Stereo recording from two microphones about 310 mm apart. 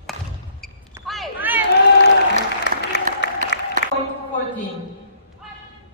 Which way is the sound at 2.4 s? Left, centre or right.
Left.